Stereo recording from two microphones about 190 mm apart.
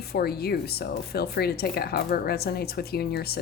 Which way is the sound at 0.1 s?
55° left (ahead or behind).